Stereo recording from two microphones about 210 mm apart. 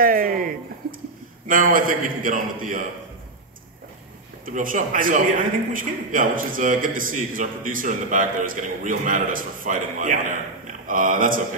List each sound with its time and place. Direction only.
0.0 s speech: 40° right (ahead or behind)
1.5 s a man's voice: 40° right (ahead or behind)
4.5 s a man's voice: 40° right (ahead or behind)